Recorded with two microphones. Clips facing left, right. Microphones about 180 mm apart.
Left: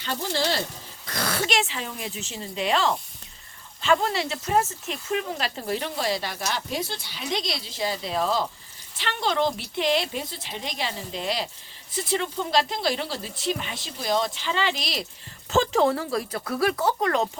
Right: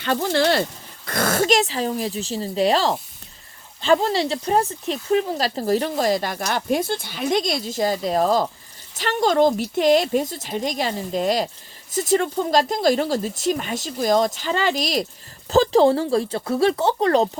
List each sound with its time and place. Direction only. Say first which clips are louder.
0.0 s speech: right 7 dB; 60° right (ahead or behind)
1.0 s speech: right 8 dB; 50° right (ahead or behind); by 17.2 s 35° right (ahead or behind)